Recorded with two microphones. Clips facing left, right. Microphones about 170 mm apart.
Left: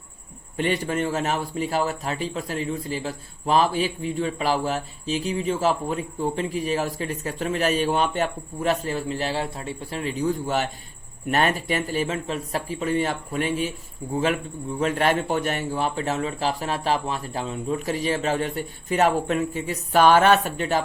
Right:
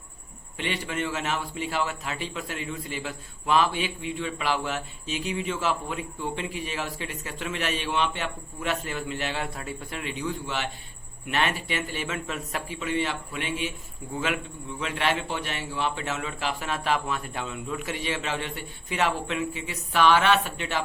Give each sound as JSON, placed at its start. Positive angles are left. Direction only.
{"t": 0.5, "sound": "a man's voice", "side_deg": 45}
{"t": 14.8, "sound": "a man's voice", "side_deg": 45}